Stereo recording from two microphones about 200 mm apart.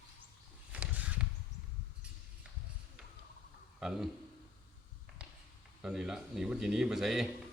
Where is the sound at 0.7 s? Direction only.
5° right (ahead or behind).